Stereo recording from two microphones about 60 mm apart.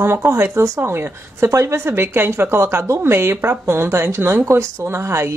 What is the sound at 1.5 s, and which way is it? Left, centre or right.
A woman's voice, right.